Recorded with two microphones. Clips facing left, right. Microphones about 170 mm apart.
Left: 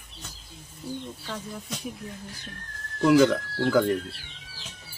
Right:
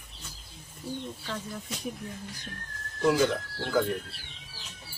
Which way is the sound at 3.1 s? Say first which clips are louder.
Left 6 dB; 75° left (ahead or behind).